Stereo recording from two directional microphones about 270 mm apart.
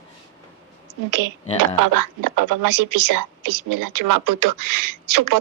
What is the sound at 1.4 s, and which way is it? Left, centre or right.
Speech, left.